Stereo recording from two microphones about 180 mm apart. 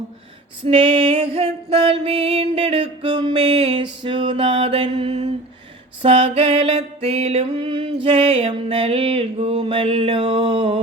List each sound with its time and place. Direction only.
0.6 s music: 30° right (ahead or behind)
4.0 s mantra: 25° right (ahead or behind)
6.0 s music: 30° right (ahead or behind)